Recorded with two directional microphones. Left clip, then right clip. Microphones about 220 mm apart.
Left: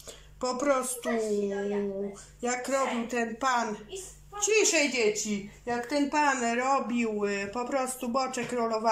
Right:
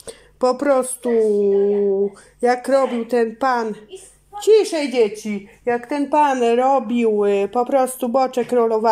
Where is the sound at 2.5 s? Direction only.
40° right (ahead or behind).